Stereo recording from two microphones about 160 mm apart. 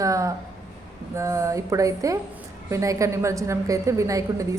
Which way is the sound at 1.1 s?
20° right (ahead or behind).